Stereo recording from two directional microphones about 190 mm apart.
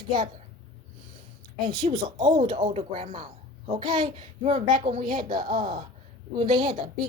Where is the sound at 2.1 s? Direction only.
30° right (ahead or behind); by 5.8 s 45° right (ahead or behind).